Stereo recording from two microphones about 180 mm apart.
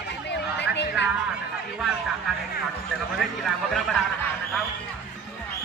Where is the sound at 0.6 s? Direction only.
75° left (ahead or behind).